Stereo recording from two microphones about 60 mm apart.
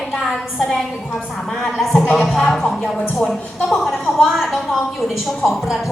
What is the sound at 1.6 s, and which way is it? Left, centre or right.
A woman's voice, centre.